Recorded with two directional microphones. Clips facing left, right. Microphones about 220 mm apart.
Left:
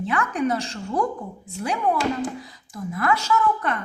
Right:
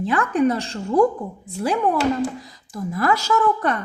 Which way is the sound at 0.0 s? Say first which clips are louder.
Right 5 dB; 35° right (ahead or behind).